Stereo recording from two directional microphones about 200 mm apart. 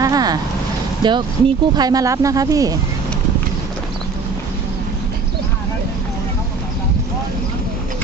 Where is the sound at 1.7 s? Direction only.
20° right (ahead or behind).